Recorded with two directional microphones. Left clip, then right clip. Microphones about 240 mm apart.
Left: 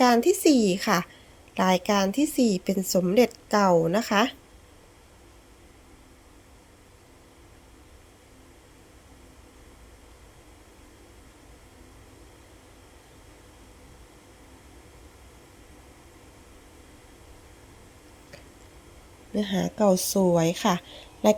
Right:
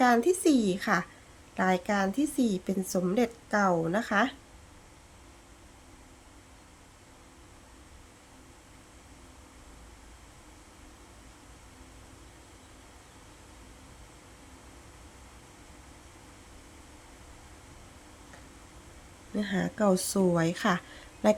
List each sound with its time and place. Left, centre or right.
0.0 s a woman's voice: centre
19.3 s speech: centre